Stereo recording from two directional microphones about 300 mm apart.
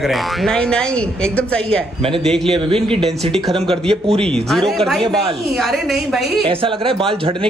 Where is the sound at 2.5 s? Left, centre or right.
Centre.